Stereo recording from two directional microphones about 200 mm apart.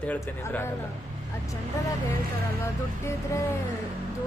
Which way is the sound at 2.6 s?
15° left (ahead or behind).